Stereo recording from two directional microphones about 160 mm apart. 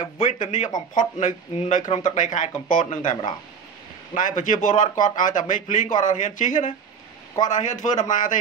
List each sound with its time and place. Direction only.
0.2 s speech: 50° left (ahead or behind)
4.4 s speech: 50° left (ahead or behind)